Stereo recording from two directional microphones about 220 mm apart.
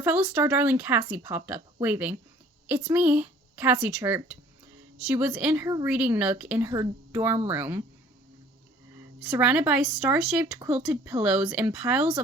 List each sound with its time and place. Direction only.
0.0 s speech: 5° right (ahead or behind)
9.2 s speech: 5° right (ahead or behind)